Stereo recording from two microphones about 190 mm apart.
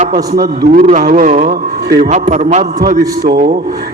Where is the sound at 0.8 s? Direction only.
35° right (ahead or behind).